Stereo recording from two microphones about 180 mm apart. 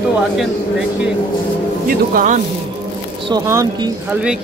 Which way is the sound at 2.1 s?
45° right (ahead or behind).